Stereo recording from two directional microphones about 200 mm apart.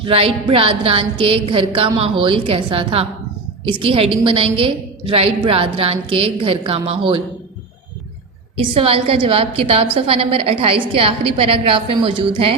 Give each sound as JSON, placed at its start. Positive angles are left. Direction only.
{"t": 0.0, "sound": "a woman's voice", "side_deg": -25}
{"t": 8.5, "sound": "a woman's voice", "side_deg": -30}